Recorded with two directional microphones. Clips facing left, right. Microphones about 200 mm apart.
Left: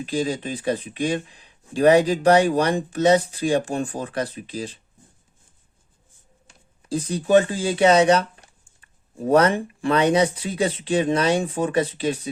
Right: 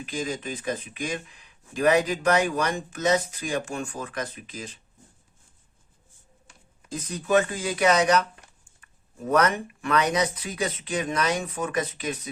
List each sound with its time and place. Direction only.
0.0 s speech: 35° left (ahead or behind)
6.8 s speech: 30° left (ahead or behind)